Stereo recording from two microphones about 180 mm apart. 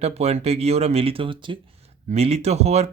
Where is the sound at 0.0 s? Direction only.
35° right (ahead or behind).